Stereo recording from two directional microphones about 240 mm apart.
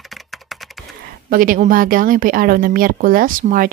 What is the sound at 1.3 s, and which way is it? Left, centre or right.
Speech, right.